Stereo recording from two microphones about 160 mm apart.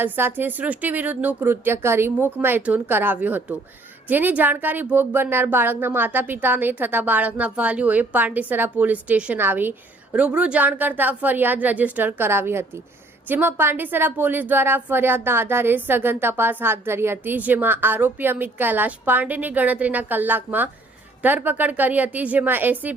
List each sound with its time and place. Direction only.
0.0 s speech: 15° right (ahead or behind)